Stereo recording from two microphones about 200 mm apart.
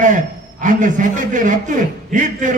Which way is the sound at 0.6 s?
40° right (ahead or behind).